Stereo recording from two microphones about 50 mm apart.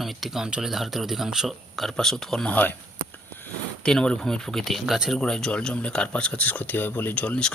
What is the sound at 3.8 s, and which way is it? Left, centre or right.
Speech, centre.